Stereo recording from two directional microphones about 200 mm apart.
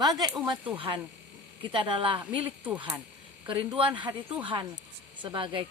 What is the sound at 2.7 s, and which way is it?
Speech, 5° right (ahead or behind).